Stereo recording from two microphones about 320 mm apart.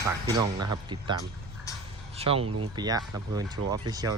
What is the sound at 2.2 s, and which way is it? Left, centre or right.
Speech, centre.